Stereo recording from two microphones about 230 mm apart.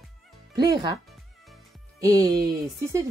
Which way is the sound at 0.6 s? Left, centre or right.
Centre.